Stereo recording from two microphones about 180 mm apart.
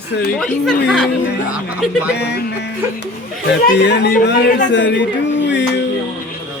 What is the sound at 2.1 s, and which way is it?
Speech, 70° left (ahead or behind).